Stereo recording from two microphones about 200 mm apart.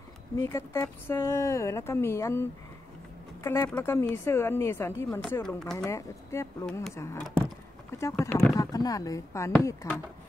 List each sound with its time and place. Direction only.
0.4 s speech: 15° left (ahead or behind)
3.4 s speech: 10° left (ahead or behind)
5.9 s speech: 15° left (ahead or behind)